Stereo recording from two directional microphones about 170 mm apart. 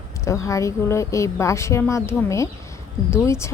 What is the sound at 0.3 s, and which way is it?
A woman's voice, 20° left (ahead or behind).